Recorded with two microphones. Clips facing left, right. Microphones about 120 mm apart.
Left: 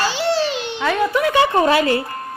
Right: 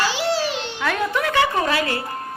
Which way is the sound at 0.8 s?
5° left (ahead or behind).